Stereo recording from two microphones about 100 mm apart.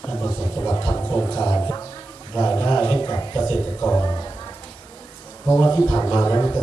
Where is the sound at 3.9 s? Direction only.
35° left (ahead or behind).